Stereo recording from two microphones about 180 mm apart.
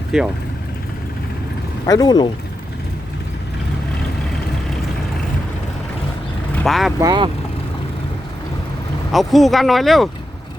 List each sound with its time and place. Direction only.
0.1 s speech: centre (ahead or behind)
1.9 s speech: 20° left (ahead or behind)
6.6 s speech: centre (ahead or behind)
7.0 s speech: 25° right (ahead or behind)
9.1 s speech: centre (ahead or behind)